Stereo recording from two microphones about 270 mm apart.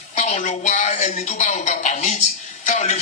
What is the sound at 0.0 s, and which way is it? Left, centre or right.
Speech, left.